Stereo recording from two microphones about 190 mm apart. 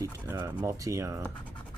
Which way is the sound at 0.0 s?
15° right (ahead or behind).